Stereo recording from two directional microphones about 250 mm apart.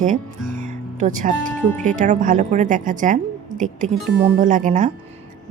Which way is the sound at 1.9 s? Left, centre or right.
Right.